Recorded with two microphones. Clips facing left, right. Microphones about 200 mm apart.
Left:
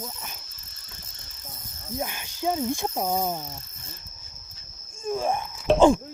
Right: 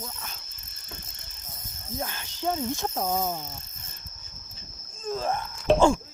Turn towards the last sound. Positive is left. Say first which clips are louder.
# left 1 dB
turn(degrees=0)  # may be behind; listen again after turning